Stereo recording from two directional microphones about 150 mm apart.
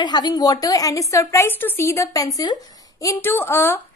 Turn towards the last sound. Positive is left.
turn(degrees=15)  # may be behind; listen again after turning